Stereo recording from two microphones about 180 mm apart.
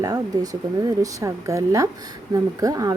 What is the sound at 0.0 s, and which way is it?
A woman's voice, 20° right (ahead or behind).